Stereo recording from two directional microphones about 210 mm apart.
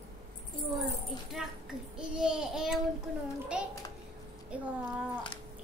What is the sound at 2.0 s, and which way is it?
Child singing, 5° right (ahead or behind).